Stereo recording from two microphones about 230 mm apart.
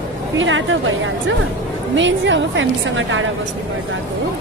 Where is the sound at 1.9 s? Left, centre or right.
Right.